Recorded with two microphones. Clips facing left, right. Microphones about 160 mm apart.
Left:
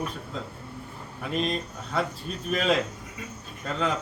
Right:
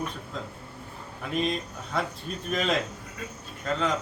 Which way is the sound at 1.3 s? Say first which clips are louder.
Even; centre (ahead or behind).